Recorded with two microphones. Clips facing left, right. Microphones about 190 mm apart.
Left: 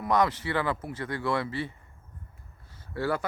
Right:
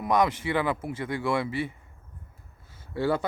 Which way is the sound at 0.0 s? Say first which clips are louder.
Right 1 dB; 15° right (ahead or behind).